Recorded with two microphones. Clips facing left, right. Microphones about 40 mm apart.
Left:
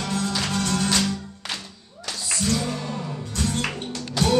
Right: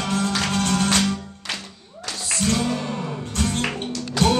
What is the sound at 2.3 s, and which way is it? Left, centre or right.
Music, right.